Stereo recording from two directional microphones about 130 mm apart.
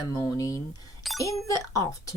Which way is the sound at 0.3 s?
25° left (ahead or behind).